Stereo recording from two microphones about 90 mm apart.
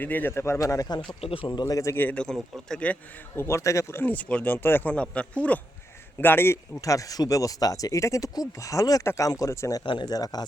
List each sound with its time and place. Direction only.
0.0 s speech: 20° left (ahead or behind); by 0.9 s 40° left (ahead or behind)
1.2 s speech: 85° left
1.6 s speech: 40° left (ahead or behind)
2.0 s speech: 20° left (ahead or behind)
2.2 s speech: 5° left (ahead or behind)
3.3 s speech: 30° left (ahead or behind)
6.8 s speech: 40° left (ahead or behind)
9.8 s speech: 60° left (ahead or behind)